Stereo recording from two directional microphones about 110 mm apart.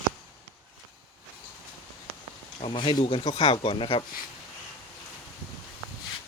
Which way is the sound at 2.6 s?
50° left (ahead or behind).